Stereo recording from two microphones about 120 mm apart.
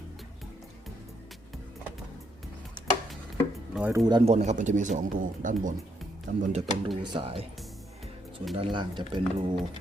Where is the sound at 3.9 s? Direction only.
35° right (ahead or behind).